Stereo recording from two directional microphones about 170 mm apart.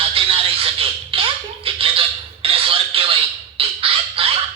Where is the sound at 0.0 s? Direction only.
35° right (ahead or behind).